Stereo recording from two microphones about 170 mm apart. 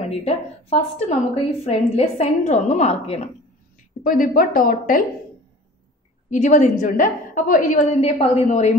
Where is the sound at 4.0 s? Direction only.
55° left (ahead or behind).